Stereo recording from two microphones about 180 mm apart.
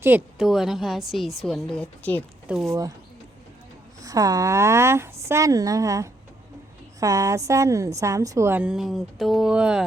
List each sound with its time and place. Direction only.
0.0 s a woman's voice: 10° right (ahead or behind); by 2.2 s 10° left (ahead or behind)
2.6 s speech: 20° right (ahead or behind)
4.0 s a woman's voice: 20° right (ahead or behind)